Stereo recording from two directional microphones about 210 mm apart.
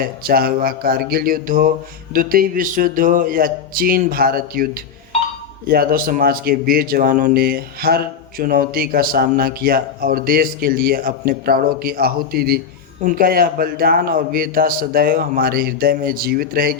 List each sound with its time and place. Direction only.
0.0 s speech: 45° right (ahead or behind)